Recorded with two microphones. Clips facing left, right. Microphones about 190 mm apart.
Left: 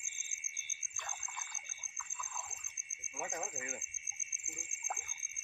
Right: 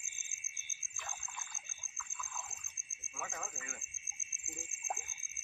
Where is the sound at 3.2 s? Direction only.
20° left (ahead or behind).